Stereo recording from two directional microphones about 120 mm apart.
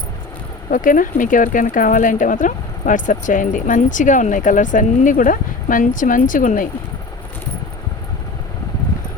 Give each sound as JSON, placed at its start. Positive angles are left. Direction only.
{"t": 0.8, "sound": "speech", "side_deg": 90}